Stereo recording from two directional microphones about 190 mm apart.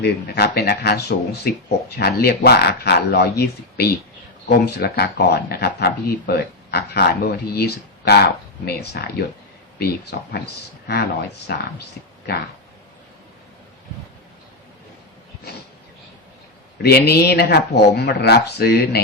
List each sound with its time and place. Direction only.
0.0 s speech: 55° left (ahead or behind)
16.7 s speech: 55° left (ahead or behind)